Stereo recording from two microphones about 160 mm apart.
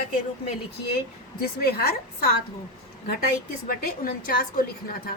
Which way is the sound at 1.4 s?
75° left (ahead or behind).